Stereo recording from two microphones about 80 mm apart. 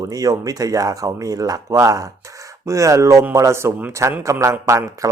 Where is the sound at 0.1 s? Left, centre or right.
Right.